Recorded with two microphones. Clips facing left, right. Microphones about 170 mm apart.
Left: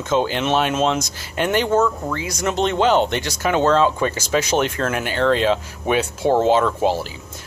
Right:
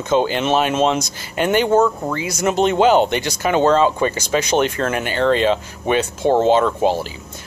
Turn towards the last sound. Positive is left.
turn(degrees=0)  # may be behind; listen again after turning